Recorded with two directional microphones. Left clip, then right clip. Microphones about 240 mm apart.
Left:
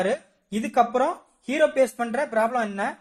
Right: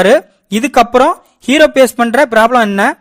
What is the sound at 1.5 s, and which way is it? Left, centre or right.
A woman's voice, right.